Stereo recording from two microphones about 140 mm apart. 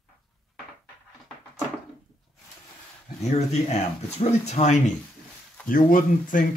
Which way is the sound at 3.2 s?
55° left (ahead or behind).